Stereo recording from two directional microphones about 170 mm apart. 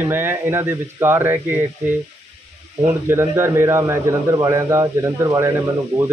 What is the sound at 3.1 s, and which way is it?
Speech, 15° right (ahead or behind).